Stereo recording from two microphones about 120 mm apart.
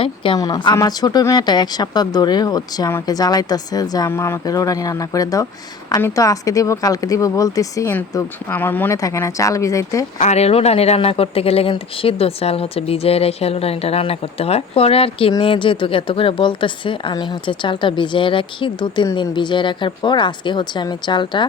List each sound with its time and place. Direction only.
0.0 s speech: 45° left (ahead or behind)
0.3 s speech: 30° left (ahead or behind)
4.1 s speech: 20° left (ahead or behind)
9.0 s speech: 30° left (ahead or behind)
10.2 s speech: 70° left (ahead or behind); by 21.4 s 40° left (ahead or behind)